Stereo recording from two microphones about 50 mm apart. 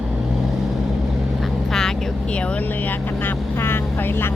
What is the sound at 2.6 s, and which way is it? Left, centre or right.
Vehicle, left.